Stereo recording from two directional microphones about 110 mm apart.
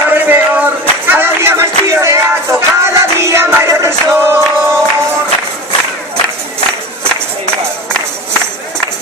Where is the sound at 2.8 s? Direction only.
25° right (ahead or behind).